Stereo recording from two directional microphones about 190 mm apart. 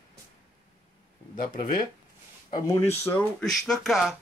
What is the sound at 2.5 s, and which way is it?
Speech, 15° left (ahead or behind).